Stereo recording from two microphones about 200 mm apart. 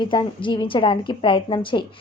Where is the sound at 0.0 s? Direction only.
25° left (ahead or behind).